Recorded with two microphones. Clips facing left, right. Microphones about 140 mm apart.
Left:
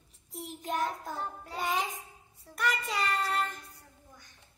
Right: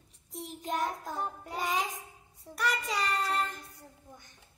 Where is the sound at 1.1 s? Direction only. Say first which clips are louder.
Right 2 dB; 20° right (ahead or behind).